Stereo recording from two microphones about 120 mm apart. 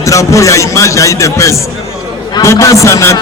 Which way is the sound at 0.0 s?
25° left (ahead or behind).